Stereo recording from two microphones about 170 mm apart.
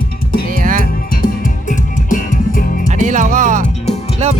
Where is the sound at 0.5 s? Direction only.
50° right (ahead or behind).